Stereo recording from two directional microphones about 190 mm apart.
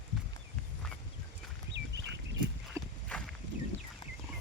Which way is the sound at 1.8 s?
70° right (ahead or behind).